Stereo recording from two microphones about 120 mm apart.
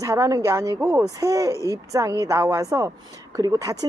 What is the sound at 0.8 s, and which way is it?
Speech, 15° right (ahead or behind).